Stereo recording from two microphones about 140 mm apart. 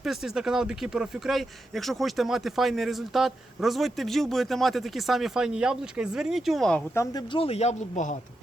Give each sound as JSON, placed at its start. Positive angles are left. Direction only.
{"t": 0.0, "sound": "speech", "side_deg": -5}
{"t": 6.9, "sound": "speech", "side_deg": 20}
{"t": 7.3, "sound": "speech", "side_deg": 45}